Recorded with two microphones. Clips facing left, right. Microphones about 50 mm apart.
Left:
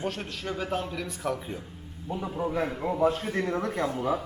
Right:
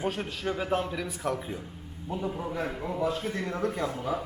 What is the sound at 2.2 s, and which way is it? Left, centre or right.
Speech, centre.